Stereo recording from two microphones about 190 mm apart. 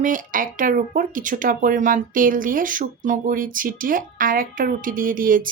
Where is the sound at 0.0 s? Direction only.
45° right (ahead or behind).